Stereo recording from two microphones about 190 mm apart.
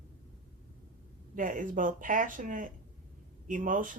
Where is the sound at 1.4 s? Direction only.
45° right (ahead or behind).